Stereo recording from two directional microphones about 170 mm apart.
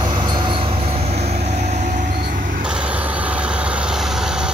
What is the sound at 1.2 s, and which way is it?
Vehicle, 40° right (ahead or behind).